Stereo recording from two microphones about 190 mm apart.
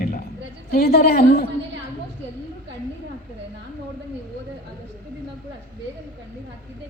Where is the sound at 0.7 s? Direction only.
55° left (ahead or behind).